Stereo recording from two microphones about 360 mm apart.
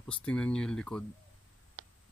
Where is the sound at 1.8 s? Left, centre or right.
Right.